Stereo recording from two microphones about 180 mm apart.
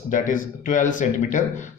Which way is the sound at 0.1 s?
45° left (ahead or behind).